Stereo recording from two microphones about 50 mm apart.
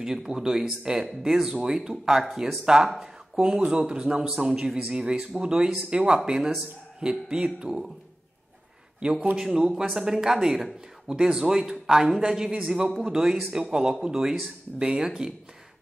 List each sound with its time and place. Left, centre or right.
0.0 s speech: centre
9.3 s speech: centre
14.8 s speech: centre